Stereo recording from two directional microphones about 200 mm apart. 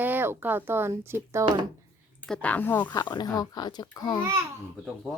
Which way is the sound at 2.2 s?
5° left (ahead or behind).